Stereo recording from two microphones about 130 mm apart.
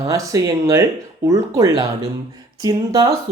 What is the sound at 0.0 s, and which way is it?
Speech, 25° right (ahead or behind).